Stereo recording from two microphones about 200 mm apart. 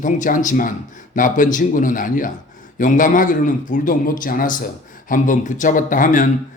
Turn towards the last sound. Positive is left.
turn(degrees=40)  # may be behind; listen again after turning